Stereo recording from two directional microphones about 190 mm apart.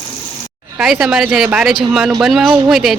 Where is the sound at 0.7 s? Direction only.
5° right (ahead or behind).